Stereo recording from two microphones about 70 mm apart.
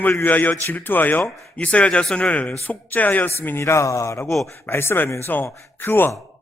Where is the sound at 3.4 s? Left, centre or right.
Left.